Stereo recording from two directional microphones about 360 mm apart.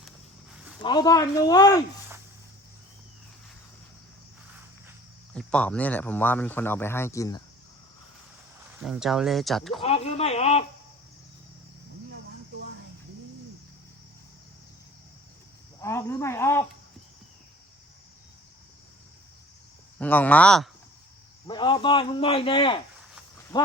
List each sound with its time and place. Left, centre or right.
0.8 s a man's voice: centre
4.9 s speech: centre
8.8 s speech: centre
9.8 s a man's voice: centre
15.8 s a man's voice: centre
20.0 s speech: centre
21.4 s a man's voice: centre